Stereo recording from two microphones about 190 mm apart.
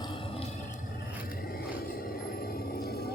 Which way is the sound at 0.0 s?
25° left (ahead or behind).